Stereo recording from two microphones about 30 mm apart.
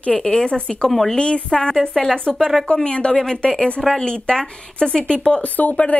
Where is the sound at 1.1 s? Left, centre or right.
Left.